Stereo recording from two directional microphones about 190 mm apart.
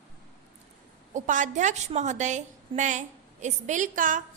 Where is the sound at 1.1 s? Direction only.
40° right (ahead or behind).